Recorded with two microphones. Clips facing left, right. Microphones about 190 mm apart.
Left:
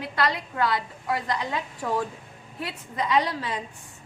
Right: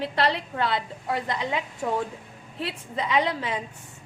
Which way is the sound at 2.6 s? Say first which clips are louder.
Even; 25° right (ahead or behind).